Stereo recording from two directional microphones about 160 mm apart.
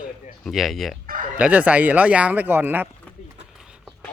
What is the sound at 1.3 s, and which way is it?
Speech, 10° right (ahead or behind).